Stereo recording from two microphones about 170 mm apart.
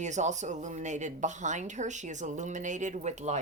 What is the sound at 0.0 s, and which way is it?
A woman's voice, 45° right (ahead or behind).